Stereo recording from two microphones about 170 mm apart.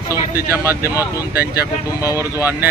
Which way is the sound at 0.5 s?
15° right (ahead or behind).